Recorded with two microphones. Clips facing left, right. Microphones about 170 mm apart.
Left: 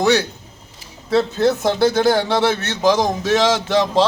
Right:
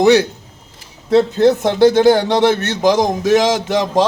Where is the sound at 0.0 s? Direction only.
15° right (ahead or behind).